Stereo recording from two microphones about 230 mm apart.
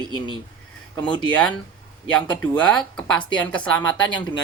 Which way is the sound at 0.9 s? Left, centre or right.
Centre.